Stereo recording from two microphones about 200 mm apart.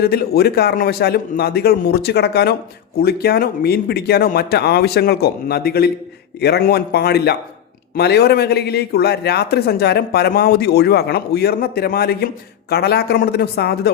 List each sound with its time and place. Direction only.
0.0 s a man's voice: 50° left (ahead or behind)